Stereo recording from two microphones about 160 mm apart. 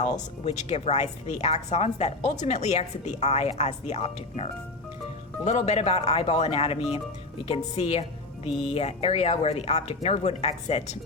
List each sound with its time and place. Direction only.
0.4 s a woman's voice: 40° left (ahead or behind)
5.5 s speech: 40° left (ahead or behind)